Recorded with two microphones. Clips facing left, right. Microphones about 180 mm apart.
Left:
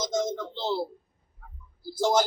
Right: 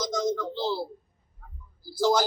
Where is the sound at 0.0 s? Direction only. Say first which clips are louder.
Right 1 dB; 25° left (ahead or behind).